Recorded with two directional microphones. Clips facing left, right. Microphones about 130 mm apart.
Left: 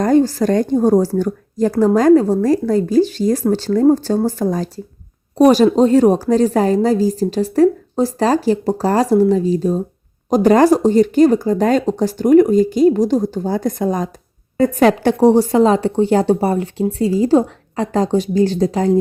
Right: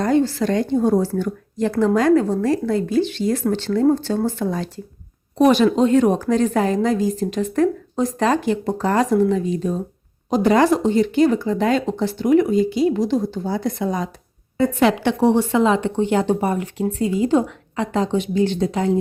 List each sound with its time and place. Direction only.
0.0 s speech: 45° left (ahead or behind)